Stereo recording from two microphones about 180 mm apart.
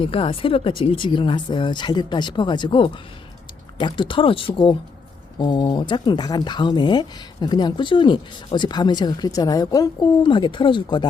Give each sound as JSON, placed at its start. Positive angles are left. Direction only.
{"t": 0.0, "sound": "speech", "side_deg": 30}